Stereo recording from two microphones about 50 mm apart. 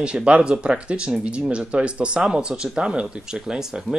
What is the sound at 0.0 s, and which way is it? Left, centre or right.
Speech, right.